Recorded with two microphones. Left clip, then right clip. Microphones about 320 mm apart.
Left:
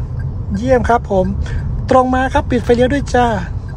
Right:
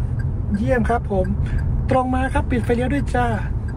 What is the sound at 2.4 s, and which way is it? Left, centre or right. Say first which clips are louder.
Speech: left 9 dB; left.